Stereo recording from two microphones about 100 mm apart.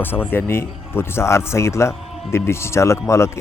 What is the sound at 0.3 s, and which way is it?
Speech, 25° left (ahead or behind).